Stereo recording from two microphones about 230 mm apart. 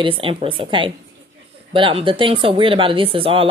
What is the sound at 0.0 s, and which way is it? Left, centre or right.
Speech, right.